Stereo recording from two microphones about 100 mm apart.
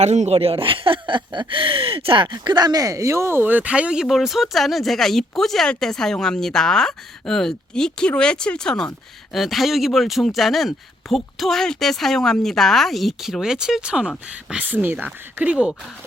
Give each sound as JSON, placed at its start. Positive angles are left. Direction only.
{"t": 0.0, "sound": "speech", "side_deg": -85}